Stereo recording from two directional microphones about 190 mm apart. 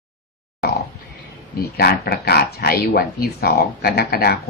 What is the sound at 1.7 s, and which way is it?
Speech, 55° left (ahead or behind).